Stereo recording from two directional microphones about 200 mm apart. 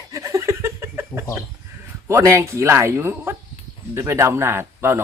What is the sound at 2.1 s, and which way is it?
Speech, 15° right (ahead or behind).